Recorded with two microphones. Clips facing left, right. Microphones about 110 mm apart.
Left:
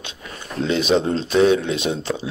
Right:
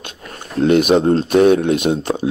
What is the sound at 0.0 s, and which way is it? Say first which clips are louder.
Speech: right 2 dB; 55° right (ahead or behind).